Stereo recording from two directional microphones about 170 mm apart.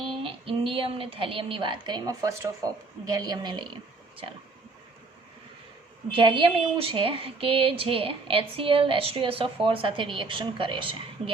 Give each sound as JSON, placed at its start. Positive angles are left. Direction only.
{"t": 0.2, "sound": "speech", "side_deg": -30}
{"t": 6.1, "sound": "a woman's voice", "side_deg": -30}